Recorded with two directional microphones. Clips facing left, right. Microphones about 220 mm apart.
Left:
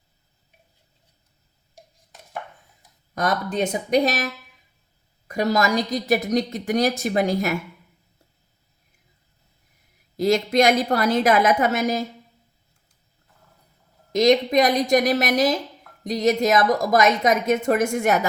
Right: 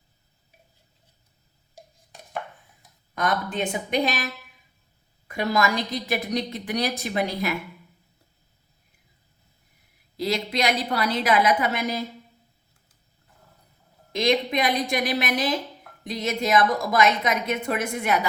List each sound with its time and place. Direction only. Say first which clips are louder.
3.2 s speech: left 3 dB; 40° left (ahead or behind)
5.3 s a woman's voice: left 3 dB; 40° left (ahead or behind)
10.2 s a woman's voice: left 7 dB; 45° left (ahead or behind)
14.1 s a woman's voice: left 6 dB; 45° left (ahead or behind)